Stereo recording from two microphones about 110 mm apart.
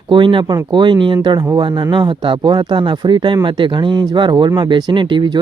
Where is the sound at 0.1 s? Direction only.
50° right (ahead or behind).